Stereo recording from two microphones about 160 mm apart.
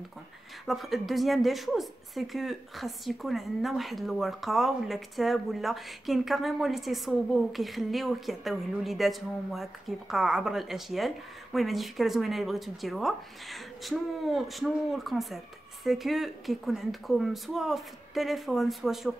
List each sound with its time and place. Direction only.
0.7 s speech: centre (ahead or behind)